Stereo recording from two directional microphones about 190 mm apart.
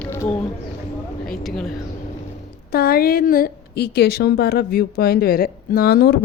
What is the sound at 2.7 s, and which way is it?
A woman's voice, 55° left (ahead or behind).